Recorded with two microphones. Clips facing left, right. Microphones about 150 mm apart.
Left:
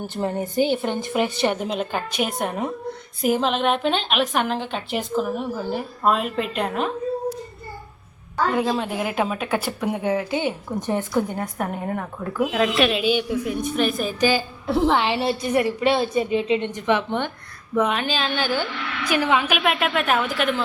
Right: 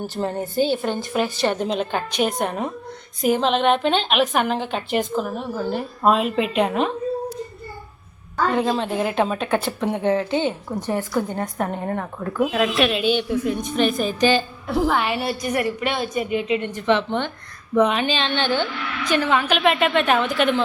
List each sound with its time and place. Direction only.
0.1 s a woman's voice: 15° left (ahead or behind)
1.5 s a woman's voice: 5° left (ahead or behind)
8.8 s a woman's voice: 10° left (ahead or behind)
11.3 s a woman's voice: 5° left (ahead or behind)
14.7 s a woman's voice: 25° left (ahead or behind); by 20.6 s centre (ahead or behind)